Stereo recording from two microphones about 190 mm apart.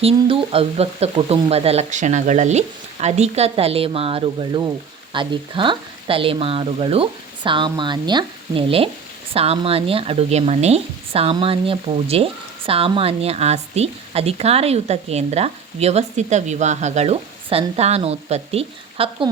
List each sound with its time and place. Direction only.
0.0 s speech: 30° right (ahead or behind)